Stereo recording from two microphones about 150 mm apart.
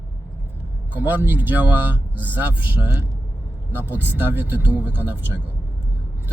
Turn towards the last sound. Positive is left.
turn(degrees=-15)  # may be behind; listen again after turning